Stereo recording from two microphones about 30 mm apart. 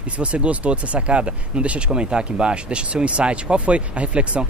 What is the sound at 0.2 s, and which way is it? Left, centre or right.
Speech, right.